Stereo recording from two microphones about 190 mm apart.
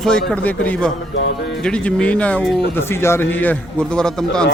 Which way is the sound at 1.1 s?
70° left (ahead or behind).